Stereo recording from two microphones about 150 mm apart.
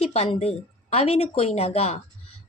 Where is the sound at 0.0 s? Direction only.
40° left (ahead or behind).